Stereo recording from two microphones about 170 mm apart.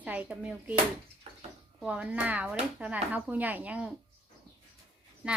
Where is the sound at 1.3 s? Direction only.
40° right (ahead or behind).